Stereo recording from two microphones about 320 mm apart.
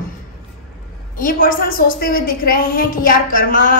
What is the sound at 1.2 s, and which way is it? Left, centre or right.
A woman's voice, left.